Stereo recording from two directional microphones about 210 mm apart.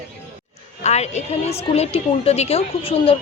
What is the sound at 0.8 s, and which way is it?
A woman's voice, 30° left (ahead or behind).